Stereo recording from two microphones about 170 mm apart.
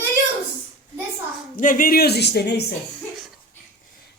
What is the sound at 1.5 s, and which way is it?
Speech, 55° left (ahead or behind).